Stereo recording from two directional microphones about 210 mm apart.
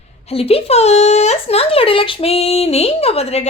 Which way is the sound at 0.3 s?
30° left (ahead or behind).